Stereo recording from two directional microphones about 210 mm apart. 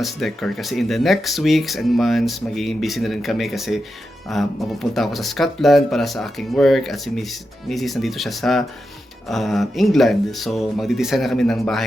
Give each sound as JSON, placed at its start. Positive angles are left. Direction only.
{"t": 0.0, "sound": "speech", "side_deg": 0}